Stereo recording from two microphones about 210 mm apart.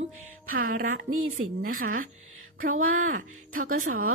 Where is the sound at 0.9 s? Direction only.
80° right.